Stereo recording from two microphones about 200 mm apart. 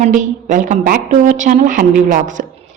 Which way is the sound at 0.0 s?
40° right (ahead or behind).